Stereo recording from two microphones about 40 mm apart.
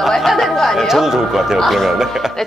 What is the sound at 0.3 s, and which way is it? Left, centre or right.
A woman's voice, centre.